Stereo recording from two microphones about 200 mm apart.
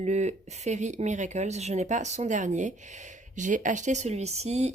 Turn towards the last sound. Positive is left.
turn(degrees=-35)  # may be behind; listen again after turning